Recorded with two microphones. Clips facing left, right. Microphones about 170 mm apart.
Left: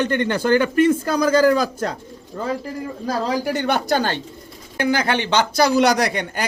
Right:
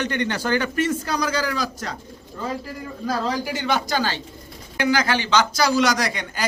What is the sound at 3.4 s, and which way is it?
Speech, 60° left (ahead or behind).